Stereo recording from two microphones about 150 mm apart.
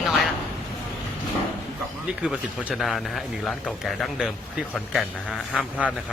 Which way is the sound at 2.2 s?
5° right (ahead or behind).